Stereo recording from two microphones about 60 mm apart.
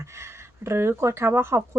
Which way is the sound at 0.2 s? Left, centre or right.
Right.